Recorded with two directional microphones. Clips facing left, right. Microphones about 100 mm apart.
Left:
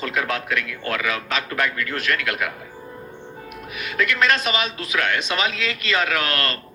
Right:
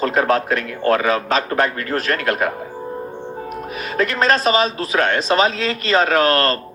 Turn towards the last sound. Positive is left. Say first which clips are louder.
# right 9 dB
turn(degrees=-35)  # may be behind; listen again after turning